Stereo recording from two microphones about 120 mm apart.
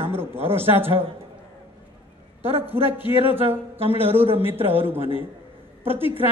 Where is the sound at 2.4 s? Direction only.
55° right (ahead or behind).